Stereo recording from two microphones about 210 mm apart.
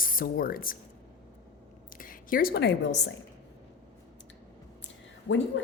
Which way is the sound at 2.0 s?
40° left (ahead or behind).